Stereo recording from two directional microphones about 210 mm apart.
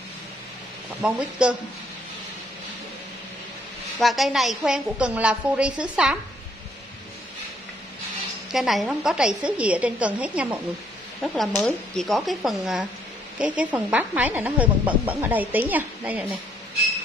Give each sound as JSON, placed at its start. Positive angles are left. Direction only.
{"t": 1.0, "sound": "a woman's voice", "side_deg": -5}
{"t": 4.0, "sound": "a woman's voice", "side_deg": 0}
{"t": 8.5, "sound": "a woman's voice", "side_deg": 0}